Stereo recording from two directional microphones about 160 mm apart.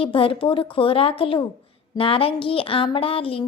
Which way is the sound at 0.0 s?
35° left (ahead or behind).